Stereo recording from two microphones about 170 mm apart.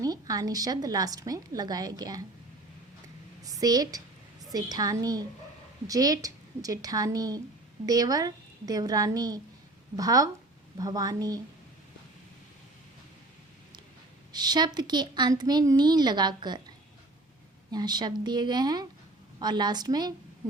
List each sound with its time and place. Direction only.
0.0 s a woman's voice: 20° right (ahead or behind)
3.4 s a woman's voice: 20° right (ahead or behind)
14.3 s a woman's voice: 25° right (ahead or behind)